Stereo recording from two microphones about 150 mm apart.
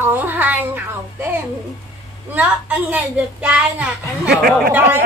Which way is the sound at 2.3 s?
10° right (ahead or behind).